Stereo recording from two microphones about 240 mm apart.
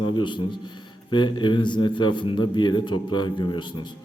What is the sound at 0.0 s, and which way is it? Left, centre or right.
A man's voice, centre.